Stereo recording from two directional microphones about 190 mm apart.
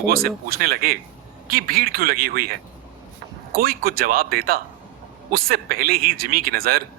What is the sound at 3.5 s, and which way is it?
Speech, 50° right (ahead or behind).